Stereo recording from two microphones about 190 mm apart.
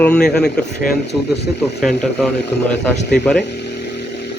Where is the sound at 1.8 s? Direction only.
Centre (ahead or behind).